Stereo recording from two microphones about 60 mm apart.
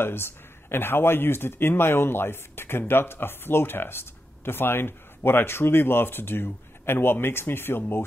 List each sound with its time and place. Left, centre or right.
0.0 s speech: left